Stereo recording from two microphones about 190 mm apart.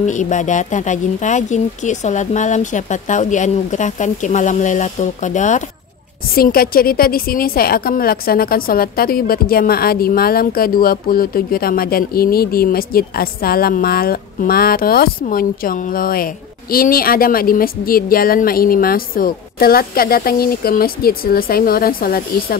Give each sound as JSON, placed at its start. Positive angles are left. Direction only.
{"t": 0.0, "sound": "speech", "side_deg": 40}
{"t": 6.3, "sound": "a woman's voice", "side_deg": 50}